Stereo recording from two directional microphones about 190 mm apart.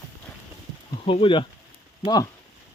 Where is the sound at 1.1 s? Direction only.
25° left (ahead or behind).